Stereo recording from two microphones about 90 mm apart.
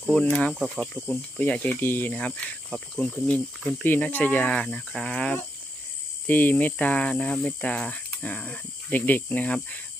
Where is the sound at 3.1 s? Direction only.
15° left (ahead or behind).